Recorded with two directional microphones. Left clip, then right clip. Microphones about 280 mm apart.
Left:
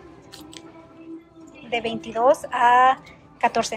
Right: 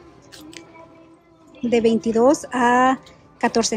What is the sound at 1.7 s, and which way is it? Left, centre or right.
Speech, centre.